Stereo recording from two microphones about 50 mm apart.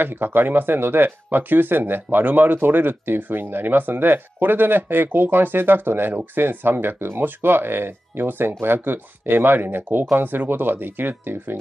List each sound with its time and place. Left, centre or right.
0.0 s speech: right